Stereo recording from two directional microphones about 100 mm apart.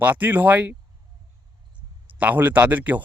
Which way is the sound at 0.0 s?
20° right (ahead or behind).